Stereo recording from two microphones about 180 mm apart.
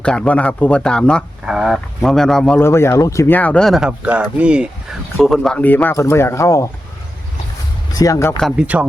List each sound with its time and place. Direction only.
0.0 s speech: 5° left (ahead or behind)
7.9 s speech: 20° left (ahead or behind)
8.4 s speech: 5° right (ahead or behind)